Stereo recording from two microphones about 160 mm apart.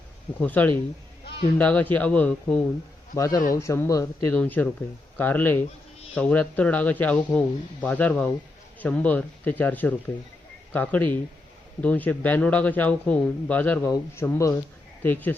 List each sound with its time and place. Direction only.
0.4 s speech: 10° left (ahead or behind)
3.2 s a man's voice: 20° left (ahead or behind)